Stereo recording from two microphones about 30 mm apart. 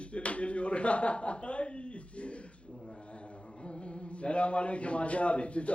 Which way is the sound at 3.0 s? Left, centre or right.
Left.